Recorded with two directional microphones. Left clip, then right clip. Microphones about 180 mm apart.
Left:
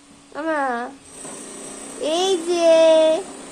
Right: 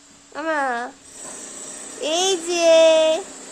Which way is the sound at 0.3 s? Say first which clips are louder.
Even; 15° right (ahead or behind).